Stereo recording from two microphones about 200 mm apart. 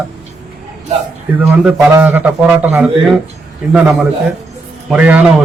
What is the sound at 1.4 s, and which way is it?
A man's voice, 5° right (ahead or behind).